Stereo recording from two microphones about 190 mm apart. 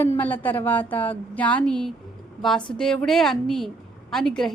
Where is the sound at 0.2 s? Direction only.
10° left (ahead or behind).